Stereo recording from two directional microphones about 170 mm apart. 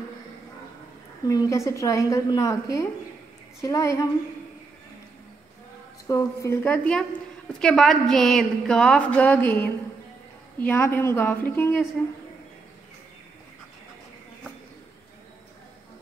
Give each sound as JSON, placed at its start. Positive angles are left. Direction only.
{"t": 1.2, "sound": "a woman's voice", "side_deg": 20}
{"t": 6.0, "sound": "a woman's voice", "side_deg": 20}